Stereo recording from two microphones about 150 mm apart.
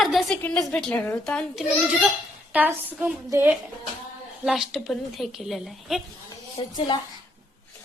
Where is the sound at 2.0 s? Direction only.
5° right (ahead or behind).